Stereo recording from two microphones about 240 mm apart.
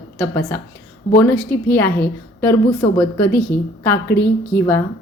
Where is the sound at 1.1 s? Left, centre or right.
Centre.